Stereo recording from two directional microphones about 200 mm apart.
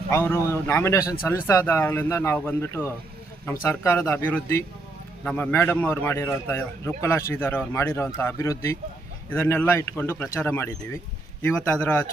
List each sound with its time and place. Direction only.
0.1 s a man's voice: 10° left (ahead or behind)